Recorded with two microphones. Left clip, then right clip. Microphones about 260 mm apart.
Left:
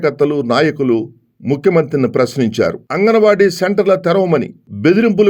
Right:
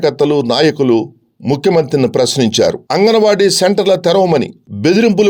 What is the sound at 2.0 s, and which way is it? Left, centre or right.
Speech, right.